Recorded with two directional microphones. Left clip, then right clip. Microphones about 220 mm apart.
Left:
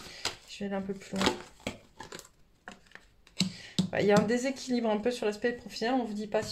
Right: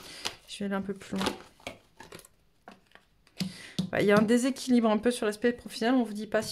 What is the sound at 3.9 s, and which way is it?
Speech, 35° right (ahead or behind).